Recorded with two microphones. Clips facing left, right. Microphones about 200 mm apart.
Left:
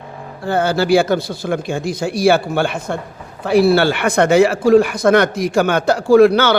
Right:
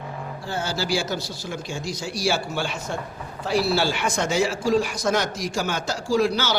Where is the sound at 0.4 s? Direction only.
60° left (ahead or behind).